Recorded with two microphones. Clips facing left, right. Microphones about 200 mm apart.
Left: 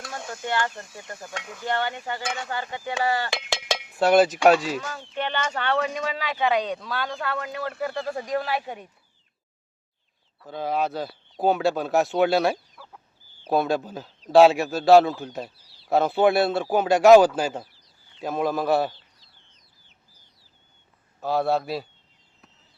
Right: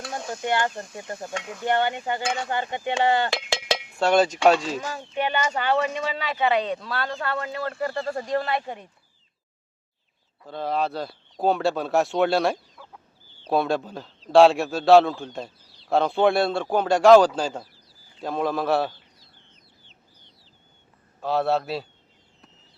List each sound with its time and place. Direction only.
0.0 s a sound: 20° right (ahead or behind)
3.9 s a man's voice: 5° left (ahead or behind)
4.8 s a man's voice: 10° right (ahead or behind); by 8.9 s 5° left (ahead or behind)
10.4 s a man's voice: 5° left (ahead or behind)
21.2 s a man's voice: centre (ahead or behind)